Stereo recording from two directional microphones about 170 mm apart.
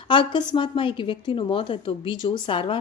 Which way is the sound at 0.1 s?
30° left (ahead or behind).